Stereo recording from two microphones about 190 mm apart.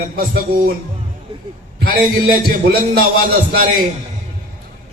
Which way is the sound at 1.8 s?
50° right (ahead or behind).